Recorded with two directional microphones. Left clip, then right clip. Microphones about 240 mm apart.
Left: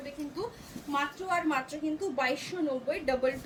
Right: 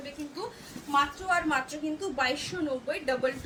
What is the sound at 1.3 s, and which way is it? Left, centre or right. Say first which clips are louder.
A woman's voice: right 3 dB; centre.